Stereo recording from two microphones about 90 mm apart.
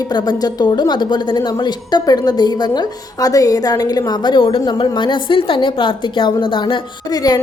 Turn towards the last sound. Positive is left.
turn(degrees=45)  # may be behind; listen again after turning